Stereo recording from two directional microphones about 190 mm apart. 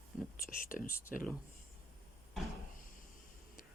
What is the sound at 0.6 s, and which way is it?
Speech, 45° left (ahead or behind).